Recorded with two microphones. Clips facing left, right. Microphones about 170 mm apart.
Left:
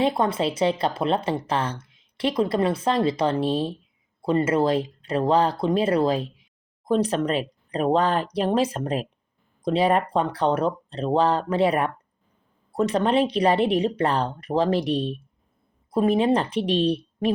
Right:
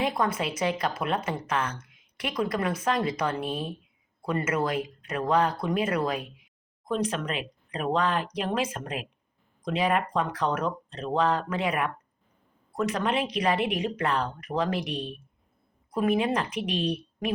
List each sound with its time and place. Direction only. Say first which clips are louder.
0.0 s speech: left 5 dB; 30° left (ahead or behind)